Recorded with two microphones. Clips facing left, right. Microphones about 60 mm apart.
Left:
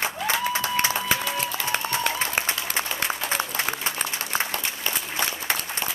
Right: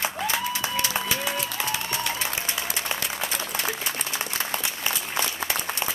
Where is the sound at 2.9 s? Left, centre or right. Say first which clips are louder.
Left 3 dB; left.